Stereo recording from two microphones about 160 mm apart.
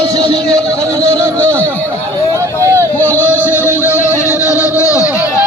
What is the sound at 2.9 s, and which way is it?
Music, 15° left (ahead or behind).